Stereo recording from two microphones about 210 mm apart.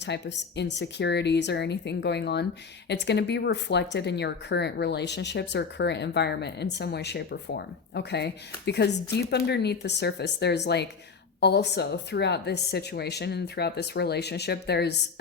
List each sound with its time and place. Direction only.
0.0 s speech: 55° left (ahead or behind)